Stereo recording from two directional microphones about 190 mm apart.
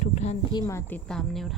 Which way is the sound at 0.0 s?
35° left (ahead or behind).